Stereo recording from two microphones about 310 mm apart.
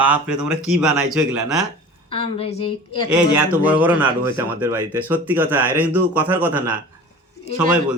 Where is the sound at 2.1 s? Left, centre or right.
Centre.